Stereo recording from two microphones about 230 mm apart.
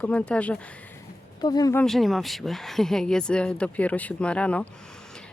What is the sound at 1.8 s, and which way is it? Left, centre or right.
Speech, centre.